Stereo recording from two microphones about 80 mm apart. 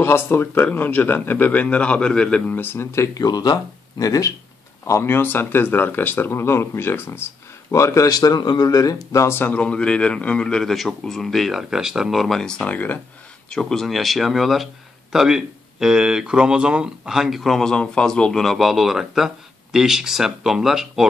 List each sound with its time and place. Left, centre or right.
0.0 s a man's voice: left; by 2.5 s centre
2.5 s speech: left
3.2 s speech: left
4.8 s speech: left
9.4 s a man's voice: centre
13.5 s speech: centre